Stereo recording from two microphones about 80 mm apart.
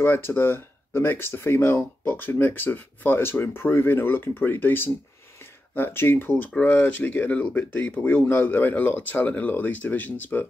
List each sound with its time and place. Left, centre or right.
0.0 s speech: left